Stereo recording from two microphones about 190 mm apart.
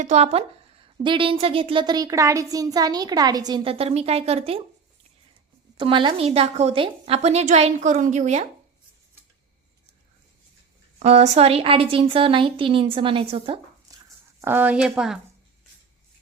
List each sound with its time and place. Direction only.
0.0 s a woman's voice: 35° right (ahead or behind)
5.7 s a woman's voice: 25° right (ahead or behind)
11.0 s a woman's voice: 35° right (ahead or behind)
14.4 s speech: 10° right (ahead or behind)